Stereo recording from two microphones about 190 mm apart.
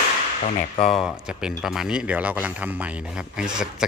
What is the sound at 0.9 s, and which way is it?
Speech, centre (ahead or behind).